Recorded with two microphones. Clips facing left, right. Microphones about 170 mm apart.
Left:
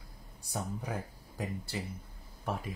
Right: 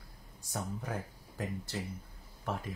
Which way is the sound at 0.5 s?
15° left (ahead or behind).